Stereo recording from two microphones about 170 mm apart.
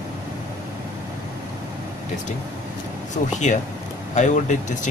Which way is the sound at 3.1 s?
45° left (ahead or behind).